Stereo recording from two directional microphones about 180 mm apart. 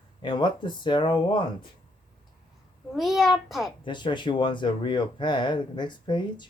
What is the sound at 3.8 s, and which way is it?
Speech, 25° left (ahead or behind).